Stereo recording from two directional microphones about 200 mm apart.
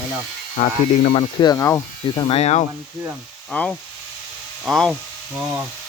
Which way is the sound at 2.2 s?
30° left (ahead or behind).